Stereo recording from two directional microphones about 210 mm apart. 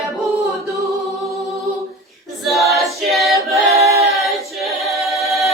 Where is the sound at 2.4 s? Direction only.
Centre (ahead or behind).